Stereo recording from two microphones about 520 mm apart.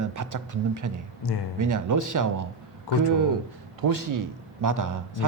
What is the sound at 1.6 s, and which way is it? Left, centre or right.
Speech, right.